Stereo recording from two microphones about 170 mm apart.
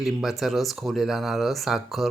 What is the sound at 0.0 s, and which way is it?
Speech, centre (ahead or behind).